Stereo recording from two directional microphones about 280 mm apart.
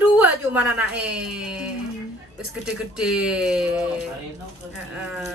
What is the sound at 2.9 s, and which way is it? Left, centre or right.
Speech, centre.